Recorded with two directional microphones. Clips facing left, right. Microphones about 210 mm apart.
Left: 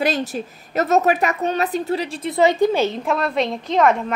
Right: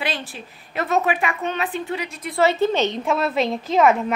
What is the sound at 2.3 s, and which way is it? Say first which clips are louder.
Speech: left 3 dB; 15° left (ahead or behind).